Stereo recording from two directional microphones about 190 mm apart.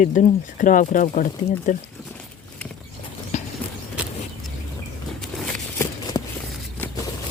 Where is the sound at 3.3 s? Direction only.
40° left (ahead or behind).